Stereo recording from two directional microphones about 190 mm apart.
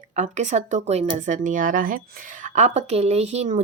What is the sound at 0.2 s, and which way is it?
Speech, 40° right (ahead or behind).